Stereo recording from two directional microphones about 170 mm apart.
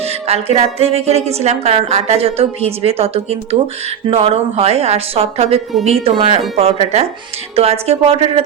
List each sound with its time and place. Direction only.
0.0 s a woman's voice: 35° right (ahead or behind)